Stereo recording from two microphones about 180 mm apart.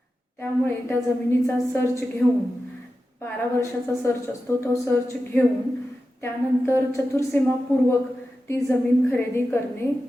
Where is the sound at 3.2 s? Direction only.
15° left (ahead or behind).